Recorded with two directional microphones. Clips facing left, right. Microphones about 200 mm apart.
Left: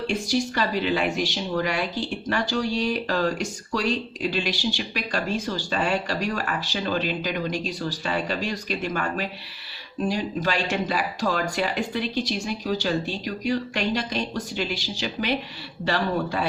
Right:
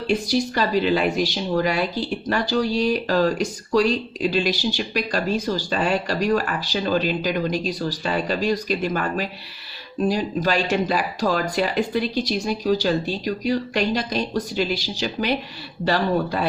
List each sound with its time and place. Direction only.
0.1 s a woman's voice: 40° right (ahead or behind)